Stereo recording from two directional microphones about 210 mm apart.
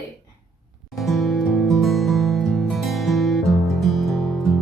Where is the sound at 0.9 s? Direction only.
Centre (ahead or behind).